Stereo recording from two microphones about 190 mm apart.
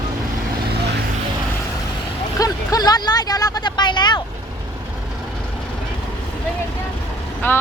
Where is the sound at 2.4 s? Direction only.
20° left (ahead or behind).